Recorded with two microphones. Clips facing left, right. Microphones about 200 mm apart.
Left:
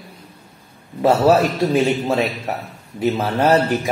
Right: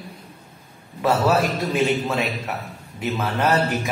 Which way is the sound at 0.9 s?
30° left (ahead or behind).